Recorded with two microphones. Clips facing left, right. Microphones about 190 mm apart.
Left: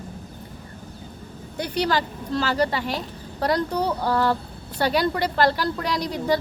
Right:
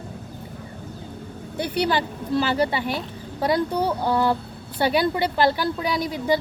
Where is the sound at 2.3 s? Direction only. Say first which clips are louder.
Right 1 dB; 10° right (ahead or behind).